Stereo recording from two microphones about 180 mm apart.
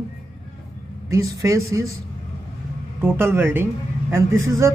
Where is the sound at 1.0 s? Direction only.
20° right (ahead or behind).